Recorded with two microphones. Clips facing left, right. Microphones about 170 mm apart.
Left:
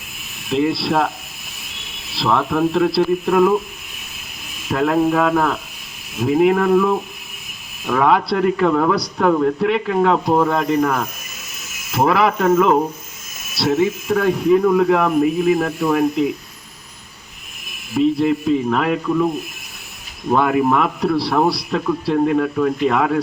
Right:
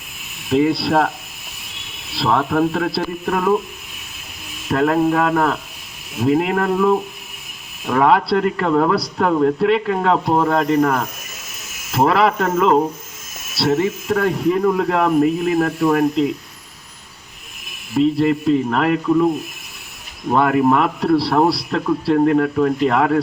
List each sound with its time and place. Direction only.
0.5 s speech: centre (ahead or behind)
2.1 s speech: centre (ahead or behind)
4.7 s speech: centre (ahead or behind)
7.9 s speech: centre (ahead or behind)
18.2 s speech: centre (ahead or behind)
20.3 s speech: centre (ahead or behind)